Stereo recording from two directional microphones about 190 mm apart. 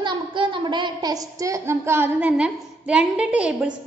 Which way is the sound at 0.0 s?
25° right (ahead or behind).